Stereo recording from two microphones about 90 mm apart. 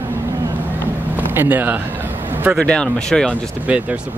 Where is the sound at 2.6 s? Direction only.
10° left (ahead or behind).